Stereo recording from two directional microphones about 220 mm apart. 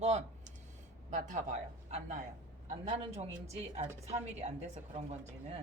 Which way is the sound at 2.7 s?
30° right (ahead or behind).